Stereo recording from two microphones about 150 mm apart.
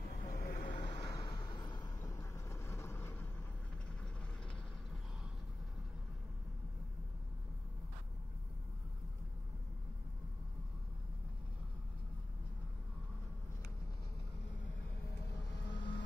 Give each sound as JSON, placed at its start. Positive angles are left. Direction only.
{"t": 0.2, "sound": "vehicle", "side_deg": 80}
{"t": 0.7, "sound": "vehicle", "side_deg": 30}
{"t": 2.0, "sound": "vehicle", "side_deg": 20}
{"t": 15.3, "sound": "vehicle", "side_deg": 30}